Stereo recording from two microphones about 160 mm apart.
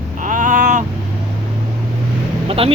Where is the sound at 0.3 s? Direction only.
55° right (ahead or behind).